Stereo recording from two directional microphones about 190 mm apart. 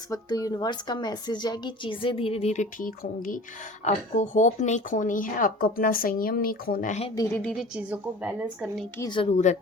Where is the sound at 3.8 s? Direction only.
40° left (ahead or behind).